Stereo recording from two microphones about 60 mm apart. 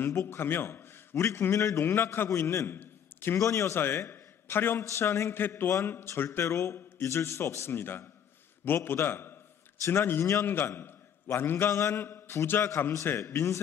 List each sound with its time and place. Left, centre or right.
0.3 s speech: left
1.1 s a man's voice: left
2.7 s a sound: left
3.3 s speech: left
3.7 s speech: left
4.1 s a sound: left
4.8 s a man's voice: left
6.4 s a man's voice: left
7.7 s a man's voice: left